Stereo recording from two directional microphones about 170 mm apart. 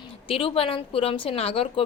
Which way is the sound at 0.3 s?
35° left (ahead or behind).